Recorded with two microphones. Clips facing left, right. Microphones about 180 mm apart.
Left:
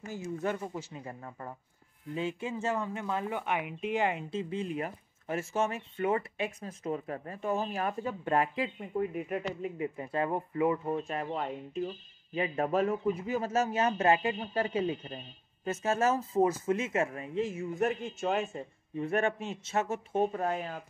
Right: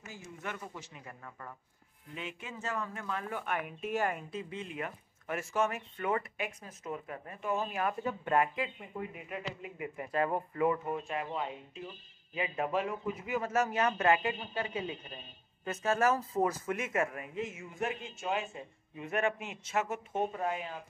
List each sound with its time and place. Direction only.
0.0 s a man's voice: 35° left (ahead or behind)
11.1 s a man's voice: 45° left (ahead or behind); by 14.3 s 30° left (ahead or behind)
14.5 s speech: 45° left (ahead or behind)
15.6 s speech: 25° left (ahead or behind); by 20.8 s 45° left (ahead or behind)